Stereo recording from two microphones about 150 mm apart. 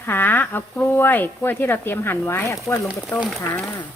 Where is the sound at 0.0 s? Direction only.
15° left (ahead or behind).